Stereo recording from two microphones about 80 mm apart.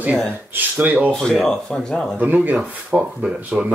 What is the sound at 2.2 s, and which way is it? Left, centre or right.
Speech, right.